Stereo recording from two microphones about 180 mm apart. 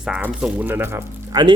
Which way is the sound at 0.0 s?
5° right (ahead or behind).